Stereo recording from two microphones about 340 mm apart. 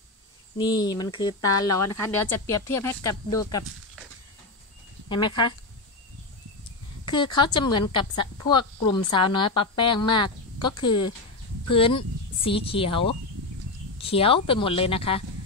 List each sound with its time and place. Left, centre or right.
0.6 s speech: centre
5.1 s speech: centre
7.1 s speech: centre